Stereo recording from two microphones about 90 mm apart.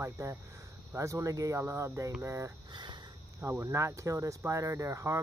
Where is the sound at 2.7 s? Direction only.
55° right (ahead or behind).